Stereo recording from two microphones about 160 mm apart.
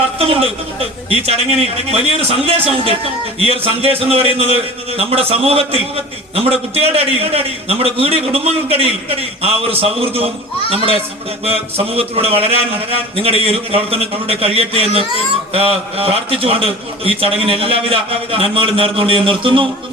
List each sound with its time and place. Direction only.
0.2 s a man's voice: 40° right (ahead or behind)